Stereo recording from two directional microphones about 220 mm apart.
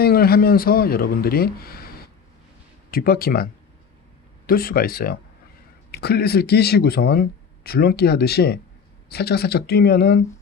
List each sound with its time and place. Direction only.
0.0 s speech: 45° left (ahead or behind)
2.9 s speech: 40° left (ahead or behind)